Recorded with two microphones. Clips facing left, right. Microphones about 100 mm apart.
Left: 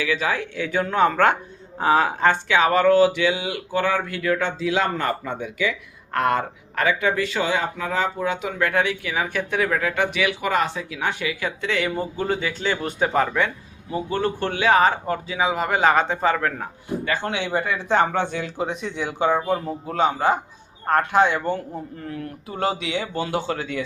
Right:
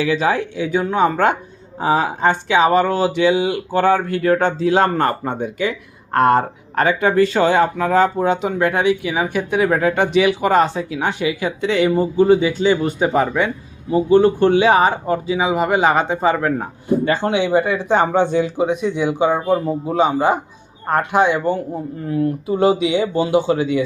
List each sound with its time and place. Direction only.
0.0 s speech: 25° right (ahead or behind)
0.5 s speech: 15° right (ahead or behind); by 8.1 s 50° right (ahead or behind)
8.2 s speech: 30° right (ahead or behind); by 9.6 s 15° right (ahead or behind)
9.6 s speech: 30° right (ahead or behind); by 23.8 s 10° right (ahead or behind)